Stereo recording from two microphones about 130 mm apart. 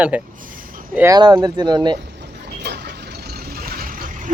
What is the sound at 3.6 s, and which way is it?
Vehicle, 90° right.